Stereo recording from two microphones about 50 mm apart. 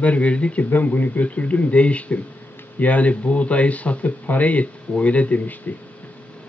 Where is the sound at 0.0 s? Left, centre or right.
Left.